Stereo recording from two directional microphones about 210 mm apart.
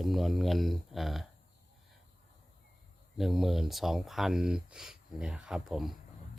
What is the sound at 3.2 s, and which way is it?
Speech, centre (ahead or behind).